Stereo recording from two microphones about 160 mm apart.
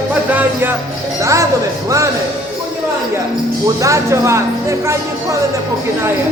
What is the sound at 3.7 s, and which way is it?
Speech, 20° right (ahead or behind).